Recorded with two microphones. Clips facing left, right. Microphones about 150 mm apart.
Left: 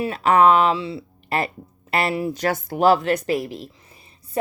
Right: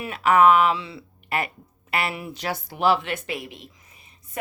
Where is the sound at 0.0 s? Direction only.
35° left (ahead or behind).